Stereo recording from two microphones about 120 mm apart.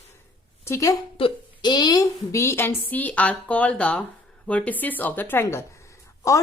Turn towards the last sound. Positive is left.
turn(degrees=25)  # may be behind; listen again after turning